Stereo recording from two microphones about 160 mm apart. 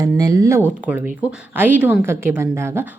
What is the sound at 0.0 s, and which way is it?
Speech, 20° right (ahead or behind).